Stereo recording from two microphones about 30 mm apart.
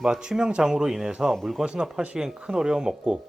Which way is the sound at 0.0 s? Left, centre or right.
Right.